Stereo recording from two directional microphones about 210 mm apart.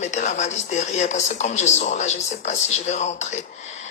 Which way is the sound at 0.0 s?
35° left (ahead or behind).